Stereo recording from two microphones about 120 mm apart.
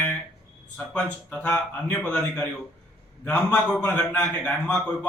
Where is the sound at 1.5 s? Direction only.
10° left (ahead or behind).